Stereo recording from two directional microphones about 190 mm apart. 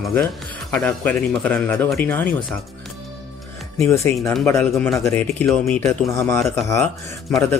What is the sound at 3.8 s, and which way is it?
A man's voice, 15° left (ahead or behind).